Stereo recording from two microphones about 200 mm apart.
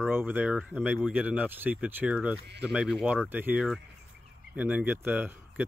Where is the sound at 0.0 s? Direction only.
10° right (ahead or behind).